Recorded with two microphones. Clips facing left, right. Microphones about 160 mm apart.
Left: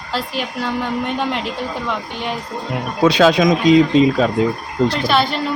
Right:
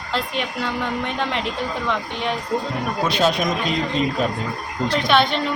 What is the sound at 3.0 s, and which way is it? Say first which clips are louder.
Speech: left 8 dB; 90° left.